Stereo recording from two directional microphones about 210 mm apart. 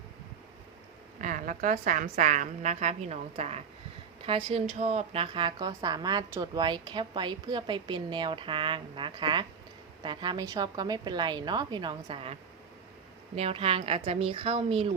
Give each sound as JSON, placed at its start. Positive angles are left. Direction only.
{"t": 1.2, "sound": "a woman's voice", "side_deg": -40}